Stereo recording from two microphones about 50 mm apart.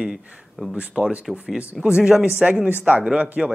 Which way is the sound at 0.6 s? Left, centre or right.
Centre.